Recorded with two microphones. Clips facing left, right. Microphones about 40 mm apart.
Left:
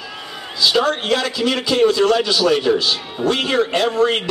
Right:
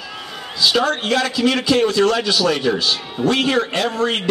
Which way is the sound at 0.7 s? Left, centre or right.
Centre.